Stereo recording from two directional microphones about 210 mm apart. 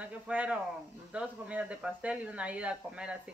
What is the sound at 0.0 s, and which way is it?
Speech, 5° right (ahead or behind).